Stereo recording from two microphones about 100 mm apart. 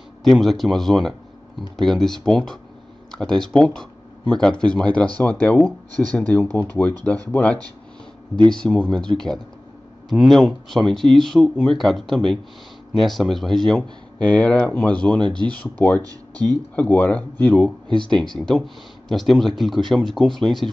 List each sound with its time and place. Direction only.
0.2 s speech: centre (ahead or behind); by 7.0 s 20° left (ahead or behind)
8.5 s speech: 10° left (ahead or behind)
15.1 s speech: 50° right (ahead or behind)
15.4 s speech: 15° left (ahead or behind)
16.0 s speech: 40° right (ahead or behind)
16.7 s speech: 15° left (ahead or behind)
18.3 s speech: 5° left (ahead or behind)